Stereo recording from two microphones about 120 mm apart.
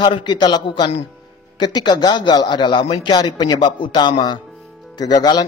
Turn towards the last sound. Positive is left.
turn(degrees=35)  # may be behind; listen again after turning